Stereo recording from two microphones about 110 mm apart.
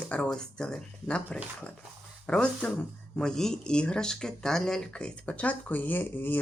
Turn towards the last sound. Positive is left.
turn(degrees=15)  # may be behind; listen again after turning